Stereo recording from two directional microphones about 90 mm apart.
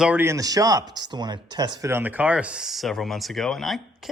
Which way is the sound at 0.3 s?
40° right (ahead or behind).